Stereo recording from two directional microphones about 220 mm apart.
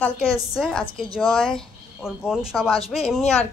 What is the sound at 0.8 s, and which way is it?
Speech, 25° left (ahead or behind).